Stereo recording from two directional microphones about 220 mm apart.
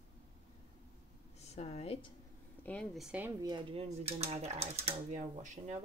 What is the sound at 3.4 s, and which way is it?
Speech, 20° right (ahead or behind).